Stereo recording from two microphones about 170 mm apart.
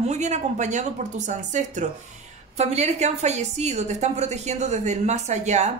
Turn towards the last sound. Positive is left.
turn(degrees=-40)  # may be behind; listen again after turning